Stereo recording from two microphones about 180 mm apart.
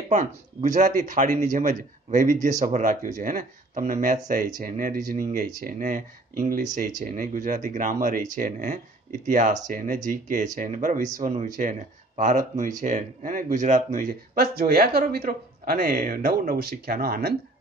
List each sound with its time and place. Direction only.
0.1 s speech: 40° right (ahead or behind)